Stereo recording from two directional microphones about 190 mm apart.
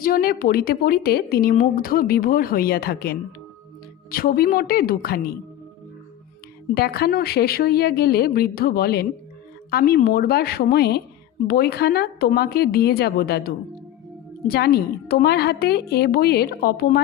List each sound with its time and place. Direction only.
0.0 s a woman's voice: 50° left (ahead or behind)
6.7 s a woman's voice: 55° left (ahead or behind)